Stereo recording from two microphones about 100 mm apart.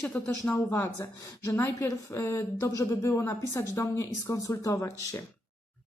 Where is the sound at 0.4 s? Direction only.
20° left (ahead or behind).